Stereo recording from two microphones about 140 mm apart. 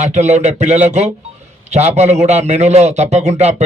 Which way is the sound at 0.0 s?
55° right (ahead or behind).